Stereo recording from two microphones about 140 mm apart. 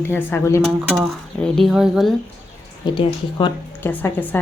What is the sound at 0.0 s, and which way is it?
Speech, 15° left (ahead or behind).